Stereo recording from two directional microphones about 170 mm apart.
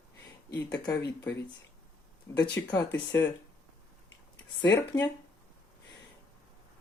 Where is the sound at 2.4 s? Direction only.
25° left (ahead or behind).